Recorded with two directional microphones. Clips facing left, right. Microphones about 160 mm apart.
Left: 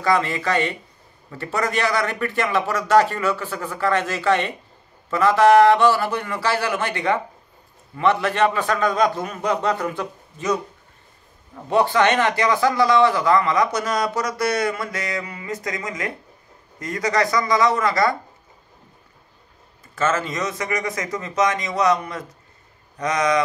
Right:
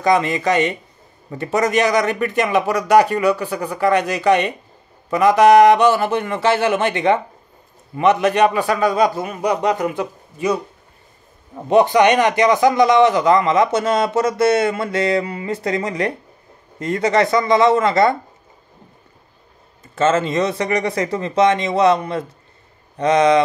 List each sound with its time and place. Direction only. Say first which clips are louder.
0.0 s a man's voice: right 4 dB; 20° right (ahead or behind)
20.0 s a man's voice: right 6 dB; 25° right (ahead or behind)